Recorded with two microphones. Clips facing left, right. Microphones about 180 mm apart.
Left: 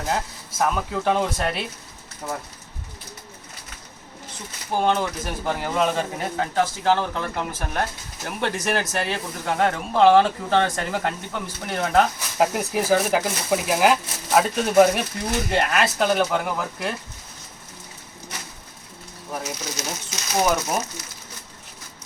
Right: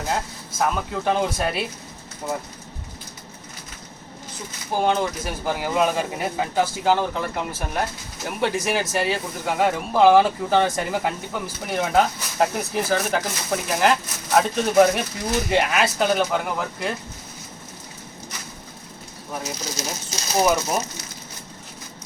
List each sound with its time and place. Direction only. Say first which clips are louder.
0.6 s speech: left 1 dB; centre (ahead or behind)
4.8 s speech: right 1 dB; centre (ahead or behind)
19.7 s speech: right 1 dB; 35° right (ahead or behind)
20.4 s speech: right 2 dB; 5° right (ahead or behind)